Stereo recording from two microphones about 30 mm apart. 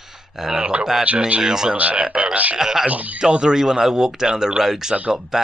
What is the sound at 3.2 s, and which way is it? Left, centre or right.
Speech, right.